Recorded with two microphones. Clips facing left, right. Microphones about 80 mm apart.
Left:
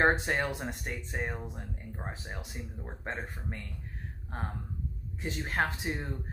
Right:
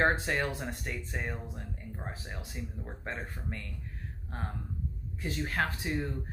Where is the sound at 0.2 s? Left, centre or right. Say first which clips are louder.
Left 1 dB; left.